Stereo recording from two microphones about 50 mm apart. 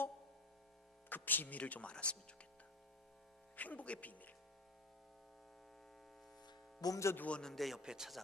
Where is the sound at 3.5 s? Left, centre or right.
Left.